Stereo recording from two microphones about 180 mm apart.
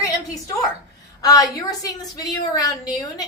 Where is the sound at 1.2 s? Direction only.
20° left (ahead or behind).